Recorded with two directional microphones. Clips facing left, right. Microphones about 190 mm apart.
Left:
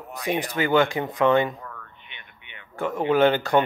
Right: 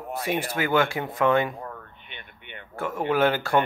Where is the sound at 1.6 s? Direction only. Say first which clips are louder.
Right 4 dB; 30° right (ahead or behind).